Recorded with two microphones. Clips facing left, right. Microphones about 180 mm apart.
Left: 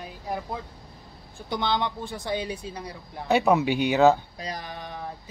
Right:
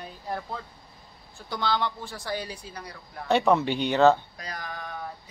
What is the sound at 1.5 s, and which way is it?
Speech, 20° left (ahead or behind).